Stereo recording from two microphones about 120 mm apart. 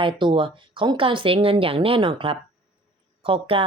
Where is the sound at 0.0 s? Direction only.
45° right (ahead or behind).